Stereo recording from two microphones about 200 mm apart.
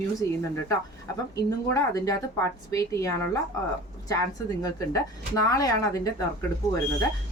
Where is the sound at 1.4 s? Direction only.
15° left (ahead or behind).